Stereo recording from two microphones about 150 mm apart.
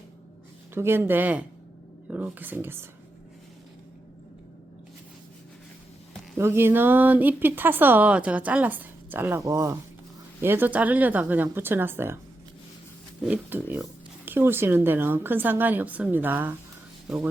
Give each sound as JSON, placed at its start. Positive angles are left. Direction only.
{"t": 0.7, "sound": "a woman's voice", "side_deg": -15}
{"t": 6.3, "sound": "a woman's voice", "side_deg": -15}
{"t": 13.2, "sound": "a woman's voice", "side_deg": -10}